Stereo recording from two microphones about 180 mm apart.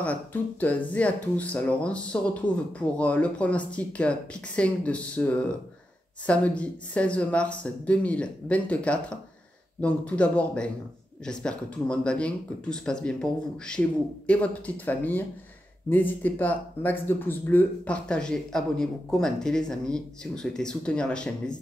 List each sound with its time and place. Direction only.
0.0 s speech: 10° left (ahead or behind)
2.4 s speech: 25° left (ahead or behind)
2.8 s speech: 5° left (ahead or behind)